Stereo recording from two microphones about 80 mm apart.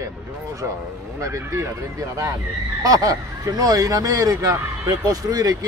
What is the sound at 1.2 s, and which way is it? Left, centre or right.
Speech, right.